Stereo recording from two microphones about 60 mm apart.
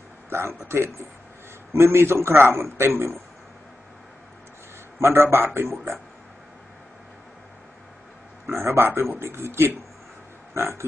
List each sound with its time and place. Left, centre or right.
0.3 s a man's voice: right
5.0 s a man's voice: right
8.5 s a man's voice: right
10.5 s a sound: right